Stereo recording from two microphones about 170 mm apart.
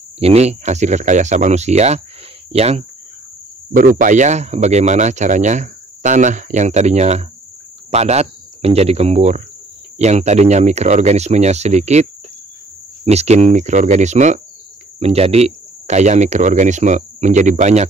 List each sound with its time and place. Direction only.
0.2 s a man's voice: 40° right (ahead or behind)
3.7 s a man's voice: 50° right (ahead or behind)